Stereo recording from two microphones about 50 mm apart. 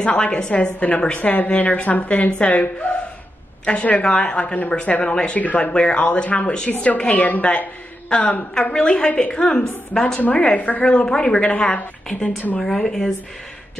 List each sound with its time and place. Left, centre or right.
0.0 s a woman's voice: centre
10.4 s a woman's voice: left
12.6 s speech: centre